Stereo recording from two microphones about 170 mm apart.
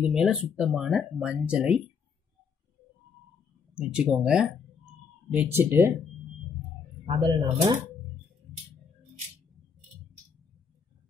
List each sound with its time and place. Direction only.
0.0 s speech: 5° right (ahead or behind)
3.7 s speech: 5° right (ahead or behind)
7.1 s speech: 25° right (ahead or behind)